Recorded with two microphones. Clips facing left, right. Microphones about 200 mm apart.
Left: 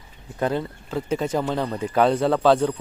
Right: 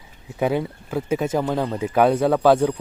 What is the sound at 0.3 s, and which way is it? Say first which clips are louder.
A man's voice: right 3 dB; 10° right (ahead or behind).